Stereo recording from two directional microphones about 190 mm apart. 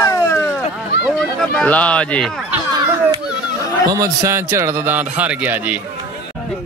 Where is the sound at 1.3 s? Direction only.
5° left (ahead or behind).